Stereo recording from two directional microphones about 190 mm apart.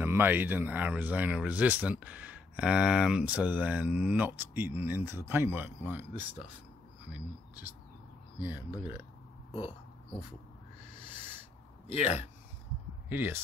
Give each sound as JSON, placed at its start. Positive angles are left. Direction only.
{"t": 0.0, "sound": "speech", "side_deg": -10}
{"t": 9.5, "sound": "a sound", "side_deg": 25}
{"t": 11.9, "sound": "a man's voice", "side_deg": 35}
{"t": 13.1, "sound": "speech", "side_deg": -10}